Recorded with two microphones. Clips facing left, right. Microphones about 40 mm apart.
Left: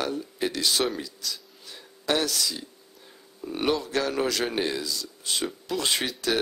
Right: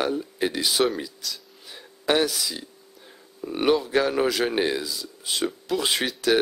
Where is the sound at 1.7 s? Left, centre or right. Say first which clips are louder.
Right 4 dB; centre.